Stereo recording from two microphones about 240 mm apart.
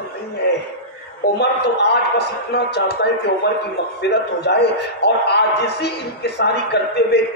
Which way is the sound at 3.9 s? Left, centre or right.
Left.